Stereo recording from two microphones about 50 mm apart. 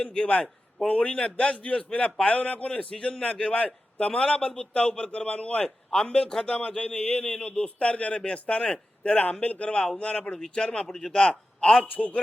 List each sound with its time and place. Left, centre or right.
0.0 s a man's voice: centre
11.9 s speech: left